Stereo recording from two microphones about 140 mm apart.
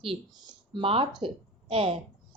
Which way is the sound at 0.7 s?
40° right (ahead or behind).